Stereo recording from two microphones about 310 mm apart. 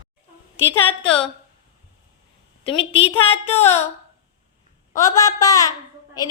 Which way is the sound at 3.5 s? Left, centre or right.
Centre.